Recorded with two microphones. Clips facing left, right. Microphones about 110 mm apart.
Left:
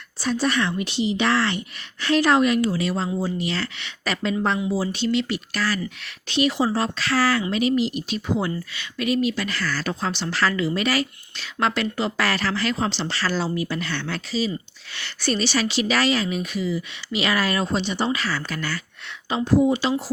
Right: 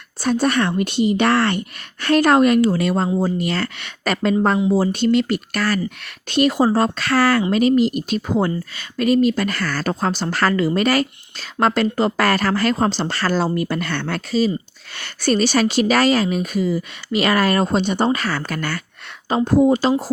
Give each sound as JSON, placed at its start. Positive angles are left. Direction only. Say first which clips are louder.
{"t": 0.2, "sound": "speech", "louder": "right 5 dB", "side_deg": -55}